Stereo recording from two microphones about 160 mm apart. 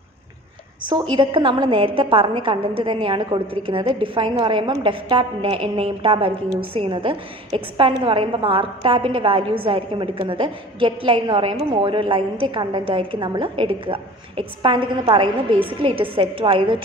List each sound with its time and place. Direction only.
0.8 s a woman's voice: 30° right (ahead or behind)